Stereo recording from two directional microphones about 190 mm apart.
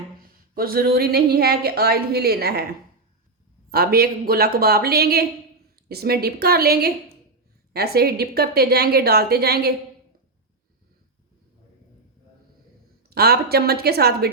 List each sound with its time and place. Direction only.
0.2 s speech: 50° right (ahead or behind)
3.7 s a woman's voice: 55° right (ahead or behind)
13.1 s speech: 55° right (ahead or behind)